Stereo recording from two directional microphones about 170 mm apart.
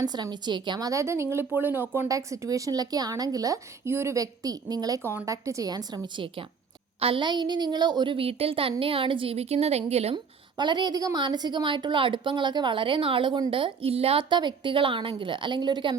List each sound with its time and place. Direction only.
0.0 s a woman's voice: 25° right (ahead or behind)
10.6 s a woman's voice: 25° right (ahead or behind)